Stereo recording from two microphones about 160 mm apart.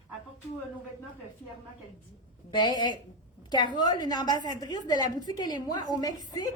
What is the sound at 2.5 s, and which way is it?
A woman's voice, 25° left (ahead or behind).